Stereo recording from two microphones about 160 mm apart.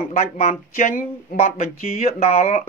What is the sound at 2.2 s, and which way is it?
Speech, 40° left (ahead or behind).